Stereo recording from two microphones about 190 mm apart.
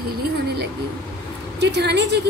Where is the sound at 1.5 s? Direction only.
60° right (ahead or behind).